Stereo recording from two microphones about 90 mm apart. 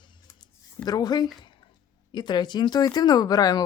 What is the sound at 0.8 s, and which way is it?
Speech, 50° left (ahead or behind).